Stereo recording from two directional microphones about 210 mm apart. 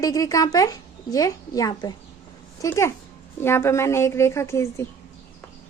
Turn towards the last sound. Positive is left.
turn(degrees=10)  # may be behind; listen again after turning